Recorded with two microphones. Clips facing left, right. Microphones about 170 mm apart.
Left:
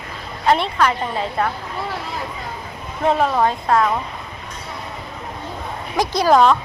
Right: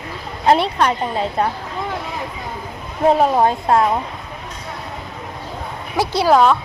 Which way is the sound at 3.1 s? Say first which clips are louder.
Right 3 dB; 30° right (ahead or behind).